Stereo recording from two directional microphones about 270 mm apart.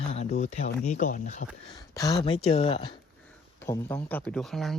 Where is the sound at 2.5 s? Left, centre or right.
Left.